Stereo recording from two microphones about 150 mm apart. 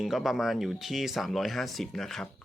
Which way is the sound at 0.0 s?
Centre (ahead or behind).